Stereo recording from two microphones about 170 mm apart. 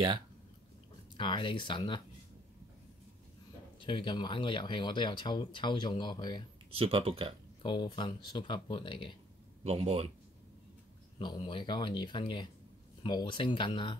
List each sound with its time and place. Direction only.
1.1 s speech: 30° left (ahead or behind)
3.8 s speech: 30° left (ahead or behind)
6.7 s speech: 35° right (ahead or behind)
7.6 s speech: 25° left (ahead or behind)
9.6 s speech: 35° right (ahead or behind)
11.1 s speech: 30° left (ahead or behind)